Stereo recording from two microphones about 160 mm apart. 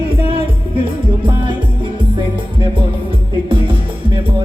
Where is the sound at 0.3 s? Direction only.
30° right (ahead or behind).